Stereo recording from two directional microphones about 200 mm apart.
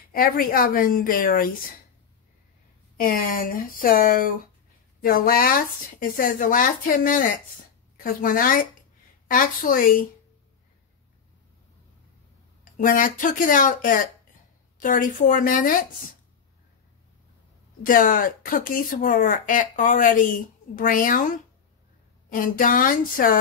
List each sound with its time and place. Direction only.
0.1 s speech: 45° left (ahead or behind)
3.0 s speech: 45° left (ahead or behind)
12.7 s speech: 40° left (ahead or behind)
17.8 s speech: 45° left (ahead or behind)
22.3 s speech: 45° left (ahead or behind)